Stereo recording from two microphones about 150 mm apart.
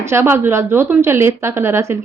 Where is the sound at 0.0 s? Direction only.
15° right (ahead or behind).